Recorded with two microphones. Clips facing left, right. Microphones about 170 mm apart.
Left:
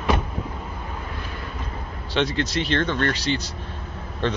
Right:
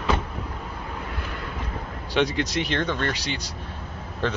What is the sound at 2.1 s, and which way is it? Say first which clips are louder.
Speech: even; 10° right (ahead or behind).